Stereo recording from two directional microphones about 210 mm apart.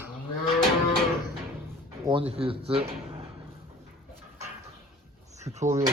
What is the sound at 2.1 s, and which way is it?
Speech, 25° right (ahead or behind).